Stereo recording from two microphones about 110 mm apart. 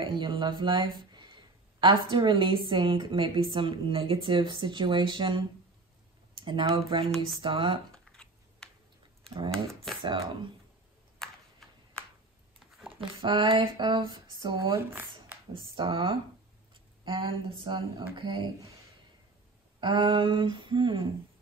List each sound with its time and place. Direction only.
0.0 s speech: 45° right (ahead or behind)
7.9 s a sound: 5° left (ahead or behind)
9.5 s speech: 5° left (ahead or behind)
10.0 s speech: 45° right (ahead or behind)
11.2 s a sound: 5° left (ahead or behind)
12.5 s a sound: 5° right (ahead or behind)
13.2 s speech: 50° right (ahead or behind)
14.8 s speech: 20° right (ahead or behind)
15.5 s speech: 50° right (ahead or behind)
19.8 s speech: 45° right (ahead or behind)